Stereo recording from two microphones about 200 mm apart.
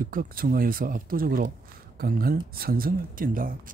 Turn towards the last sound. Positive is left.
turn(degrees=-45)  # may be behind; listen again after turning